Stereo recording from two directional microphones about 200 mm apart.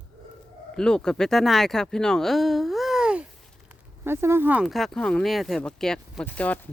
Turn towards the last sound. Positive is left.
turn(degrees=5)  # may be behind; listen again after turning